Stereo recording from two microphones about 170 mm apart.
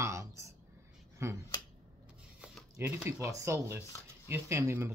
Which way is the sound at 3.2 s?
15° right (ahead or behind).